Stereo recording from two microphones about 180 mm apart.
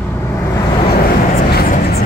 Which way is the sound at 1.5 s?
60° left (ahead or behind).